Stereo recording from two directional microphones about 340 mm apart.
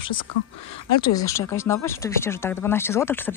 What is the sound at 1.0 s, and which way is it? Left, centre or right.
Speech, centre.